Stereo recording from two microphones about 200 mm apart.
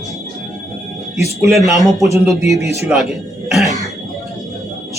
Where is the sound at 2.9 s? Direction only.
Centre (ahead or behind).